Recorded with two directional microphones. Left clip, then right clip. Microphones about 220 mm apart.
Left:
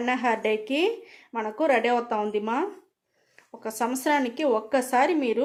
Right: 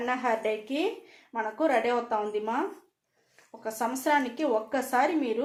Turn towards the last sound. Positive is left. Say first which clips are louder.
# left 3 dB
turn(degrees=45)  # may be behind; listen again after turning